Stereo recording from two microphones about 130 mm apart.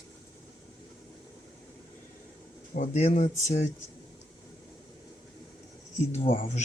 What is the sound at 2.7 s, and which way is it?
Speech, 70° left (ahead or behind).